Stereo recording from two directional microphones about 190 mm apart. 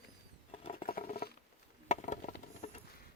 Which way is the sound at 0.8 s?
50° left (ahead or behind).